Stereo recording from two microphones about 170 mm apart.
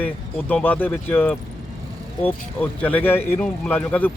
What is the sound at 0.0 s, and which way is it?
A man's voice, 10° left (ahead or behind).